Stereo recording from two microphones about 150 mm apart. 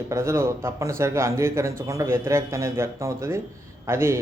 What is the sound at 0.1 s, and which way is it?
Speech, 20° right (ahead or behind).